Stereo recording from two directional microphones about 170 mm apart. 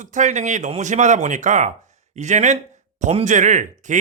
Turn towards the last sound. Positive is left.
turn(degrees=-45)  # may be behind; listen again after turning